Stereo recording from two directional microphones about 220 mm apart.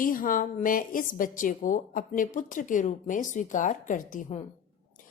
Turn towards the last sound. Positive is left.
turn(degrees=35)  # may be behind; listen again after turning